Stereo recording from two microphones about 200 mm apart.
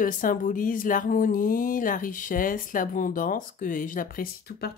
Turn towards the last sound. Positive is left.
turn(degrees=45)  # may be behind; listen again after turning